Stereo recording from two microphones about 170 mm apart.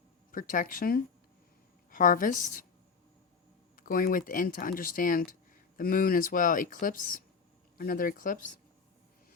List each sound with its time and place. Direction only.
0.3 s speech: 50° left (ahead or behind)
3.8 s speech: 55° left (ahead or behind)